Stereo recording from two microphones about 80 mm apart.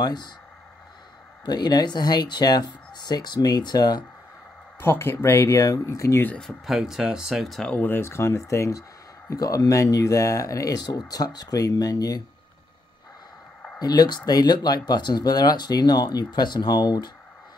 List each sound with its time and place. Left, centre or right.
0.0 s speech: left
1.4 s speech: left
4.7 s speech: left
6.4 s speech: centre
7.7 s speech: left
13.7 s speech: left